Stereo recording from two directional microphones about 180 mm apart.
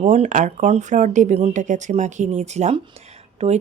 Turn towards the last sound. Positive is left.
turn(degrees=-35)  # may be behind; listen again after turning